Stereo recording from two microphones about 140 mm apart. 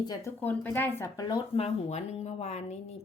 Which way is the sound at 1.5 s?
55° left (ahead or behind).